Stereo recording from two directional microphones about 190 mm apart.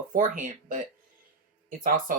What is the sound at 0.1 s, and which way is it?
Speech, 45° right (ahead or behind).